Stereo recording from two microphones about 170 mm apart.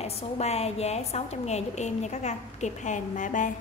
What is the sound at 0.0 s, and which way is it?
A woman's voice, 40° left (ahead or behind).